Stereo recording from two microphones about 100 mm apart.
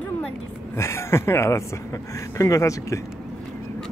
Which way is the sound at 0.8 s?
25° left (ahead or behind).